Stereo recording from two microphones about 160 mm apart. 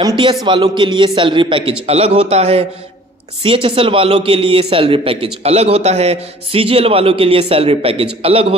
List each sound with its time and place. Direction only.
0.0 s a man's voice: 30° right (ahead or behind)